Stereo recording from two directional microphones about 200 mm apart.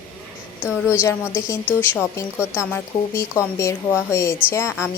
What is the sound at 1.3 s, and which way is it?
A woman's voice, 15° left (ahead or behind).